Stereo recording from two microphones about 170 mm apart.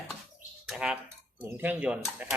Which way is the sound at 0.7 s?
5° right (ahead or behind).